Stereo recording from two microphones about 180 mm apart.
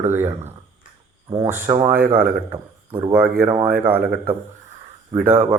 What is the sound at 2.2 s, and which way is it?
Speech, 55° right (ahead or behind).